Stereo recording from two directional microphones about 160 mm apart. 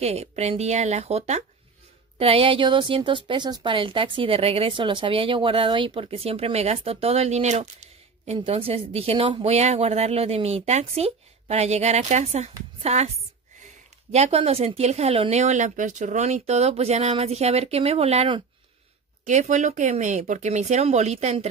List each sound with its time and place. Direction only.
0.0 s a woman's voice: 40° right (ahead or behind)
19.2 s speech: 50° right (ahead or behind)